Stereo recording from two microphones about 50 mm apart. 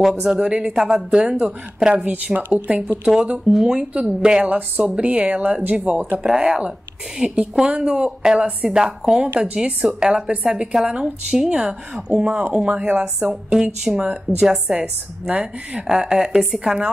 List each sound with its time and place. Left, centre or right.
0.0 s speech: centre
2.0 s a woman's voice: right
3.5 s a woman's voice: centre
6.2 s a woman's voice: centre
13.3 s speech: centre